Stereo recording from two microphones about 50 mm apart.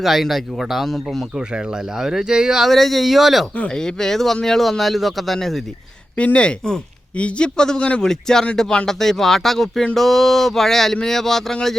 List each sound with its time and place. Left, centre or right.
0.0 s speech: centre
2.0 s speech: centre
2.6 s speech: centre
3.8 s speech: centre
6.1 s speech: left; by 11.5 s centre